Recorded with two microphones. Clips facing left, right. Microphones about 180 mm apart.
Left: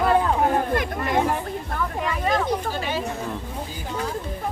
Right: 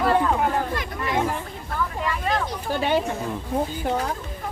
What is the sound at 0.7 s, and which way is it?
Chatter, 50° left (ahead or behind).